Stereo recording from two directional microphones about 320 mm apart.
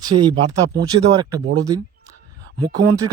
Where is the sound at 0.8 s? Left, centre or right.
Centre.